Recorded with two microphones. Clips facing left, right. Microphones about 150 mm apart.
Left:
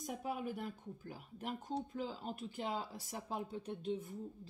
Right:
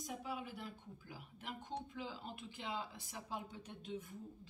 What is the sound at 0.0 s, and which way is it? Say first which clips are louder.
Speech: left 4 dB; 50° left (ahead or behind).